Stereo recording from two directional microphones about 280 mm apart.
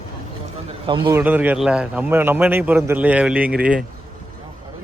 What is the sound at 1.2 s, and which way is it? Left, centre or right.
A man's voice, centre.